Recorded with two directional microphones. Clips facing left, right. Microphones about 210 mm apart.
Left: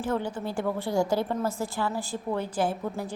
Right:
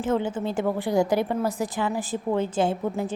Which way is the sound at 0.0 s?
20° right (ahead or behind).